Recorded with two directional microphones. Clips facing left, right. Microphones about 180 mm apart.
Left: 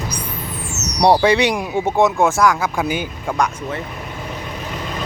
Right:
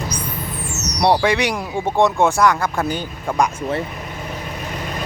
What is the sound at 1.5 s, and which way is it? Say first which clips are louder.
Speech: left 2 dB; 15° left (ahead or behind).